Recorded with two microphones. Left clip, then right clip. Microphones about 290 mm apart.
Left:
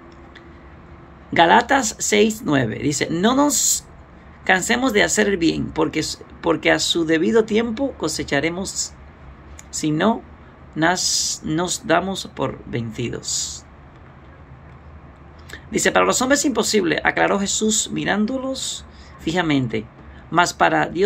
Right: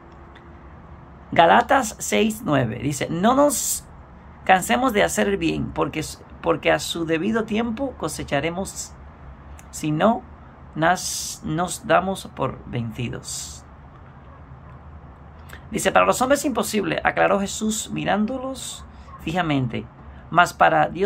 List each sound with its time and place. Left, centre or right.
1.3 s speech: centre
15.5 s speech: centre